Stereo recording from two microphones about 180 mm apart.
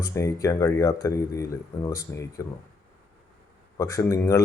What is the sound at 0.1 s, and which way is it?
Speech, 15° left (ahead or behind).